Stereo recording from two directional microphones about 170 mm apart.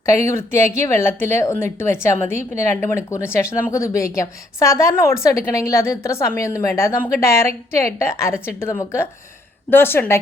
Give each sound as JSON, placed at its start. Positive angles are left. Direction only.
{"t": 0.0, "sound": "a woman's voice", "side_deg": 15}